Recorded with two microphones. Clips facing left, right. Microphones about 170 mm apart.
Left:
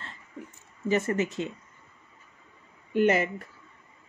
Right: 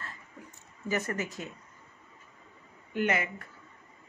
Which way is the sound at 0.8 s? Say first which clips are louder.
Left 6 dB; 25° left (ahead or behind).